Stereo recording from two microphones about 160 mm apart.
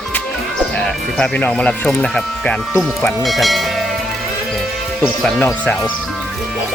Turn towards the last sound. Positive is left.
turn(degrees=10)  # may be behind; listen again after turning